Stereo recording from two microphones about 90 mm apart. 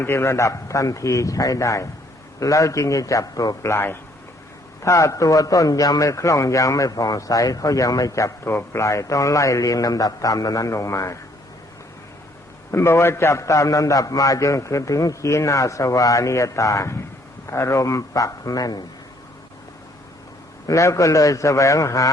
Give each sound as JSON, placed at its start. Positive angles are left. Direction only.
{"t": 0.0, "sound": "a man's voice", "side_deg": 30}
{"t": 12.7, "sound": "a man's voice", "side_deg": 30}
{"t": 20.7, "sound": "a man's voice", "side_deg": 35}